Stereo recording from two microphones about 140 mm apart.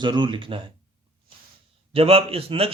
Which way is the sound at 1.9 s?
40° right (ahead or behind).